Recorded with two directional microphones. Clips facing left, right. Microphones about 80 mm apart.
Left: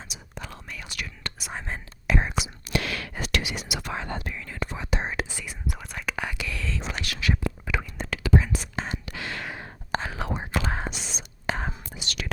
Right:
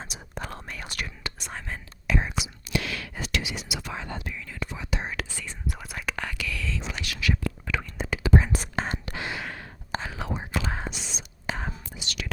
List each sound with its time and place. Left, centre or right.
0.0 s whispering: right
1.5 s whispering: left
2.1 s whispering: left
5.1 s whispering: centre
5.6 s whispering: centre
6.1 s whispering: centre
6.6 s whispering: left
7.3 s whispering: centre
7.9 s whispering: centre
8.3 s whispering: right
9.9 s whispering: left